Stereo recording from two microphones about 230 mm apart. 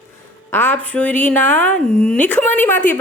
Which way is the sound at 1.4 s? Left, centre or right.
Right.